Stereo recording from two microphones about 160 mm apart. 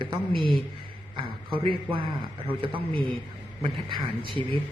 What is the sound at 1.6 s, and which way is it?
Speech, 35° right (ahead or behind).